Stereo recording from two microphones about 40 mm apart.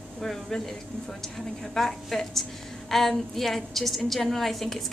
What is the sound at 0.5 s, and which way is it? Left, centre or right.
A woman's voice, centre.